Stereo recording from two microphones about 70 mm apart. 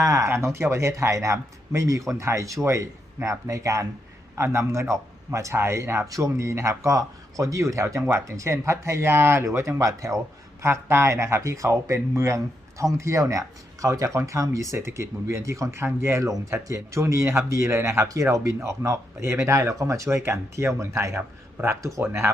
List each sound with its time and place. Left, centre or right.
0.0 s speech: right
4.4 s speech: right
6.1 s speech: right
10.6 s speech: right
16.2 s speech: right